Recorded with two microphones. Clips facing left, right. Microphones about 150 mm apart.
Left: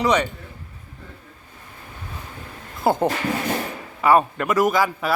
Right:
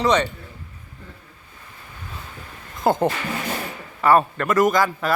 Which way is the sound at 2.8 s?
10° left (ahead or behind).